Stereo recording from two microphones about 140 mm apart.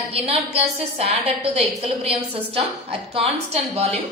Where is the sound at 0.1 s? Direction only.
45° right (ahead or behind).